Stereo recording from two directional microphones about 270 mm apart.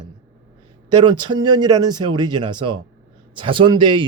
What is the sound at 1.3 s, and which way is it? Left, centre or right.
A man's voice, centre.